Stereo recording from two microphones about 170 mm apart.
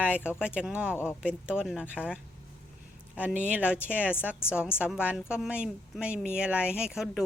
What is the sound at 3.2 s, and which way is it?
Speech, 10° right (ahead or behind).